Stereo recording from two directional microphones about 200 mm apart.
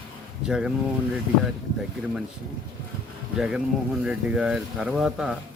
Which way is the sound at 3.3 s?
5° right (ahead or behind).